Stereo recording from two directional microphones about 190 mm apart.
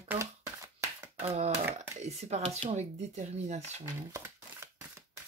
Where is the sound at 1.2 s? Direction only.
35° right (ahead or behind).